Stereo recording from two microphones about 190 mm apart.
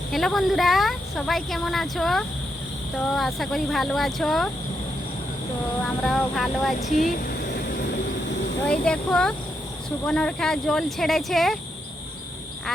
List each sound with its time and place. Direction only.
0.1 s speech: centre (ahead or behind)
5.8 s speech: 5° left (ahead or behind)
6.7 s a sound: 40° left (ahead or behind)
8.6 s speech: 5° left (ahead or behind)